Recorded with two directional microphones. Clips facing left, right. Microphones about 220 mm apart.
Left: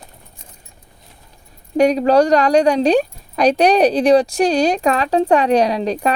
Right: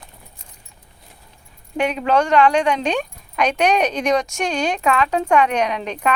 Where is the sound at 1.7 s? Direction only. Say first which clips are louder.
Left 6 dB; 35° left (ahead or behind).